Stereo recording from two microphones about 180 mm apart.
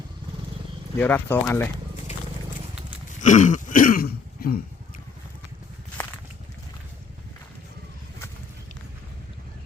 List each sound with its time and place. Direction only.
0.9 s speech: 10° left (ahead or behind)
3.2 s throat clearing: 45° left (ahead or behind)